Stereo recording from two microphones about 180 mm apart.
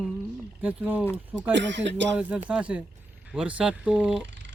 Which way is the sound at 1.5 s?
80° right.